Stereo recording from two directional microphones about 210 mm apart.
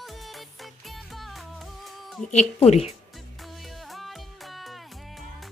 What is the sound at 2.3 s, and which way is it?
Speech, 30° left (ahead or behind).